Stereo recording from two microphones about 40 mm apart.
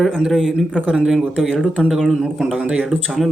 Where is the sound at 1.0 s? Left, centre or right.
Centre.